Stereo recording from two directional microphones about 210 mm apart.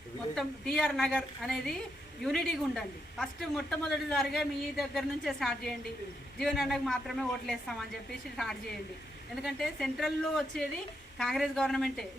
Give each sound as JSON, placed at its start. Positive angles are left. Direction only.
{"t": 0.3, "sound": "speech", "side_deg": 5}
{"t": 9.3, "sound": "speech", "side_deg": 0}